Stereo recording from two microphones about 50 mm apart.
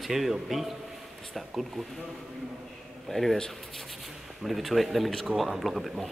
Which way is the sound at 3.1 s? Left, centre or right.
Centre.